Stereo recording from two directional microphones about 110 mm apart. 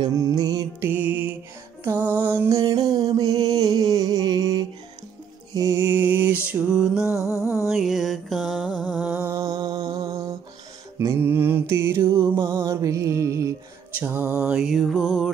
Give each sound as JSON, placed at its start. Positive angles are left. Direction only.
{"t": 0.0, "sound": "music", "side_deg": -30}
{"t": 0.8, "sound": "music", "side_deg": -15}
{"t": 7.2, "sound": "music", "side_deg": -25}
{"t": 7.6, "sound": "mantra", "side_deg": 0}
{"t": 9.2, "sound": "music", "side_deg": -30}
{"t": 11.0, "sound": "mantra", "side_deg": -25}
{"t": 12.5, "sound": "music", "side_deg": -25}
{"t": 13.9, "sound": "music", "side_deg": -20}
{"t": 14.4, "sound": "music", "side_deg": -10}